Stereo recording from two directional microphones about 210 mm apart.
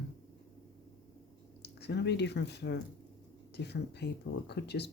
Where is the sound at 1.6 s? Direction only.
55° left (ahead or behind).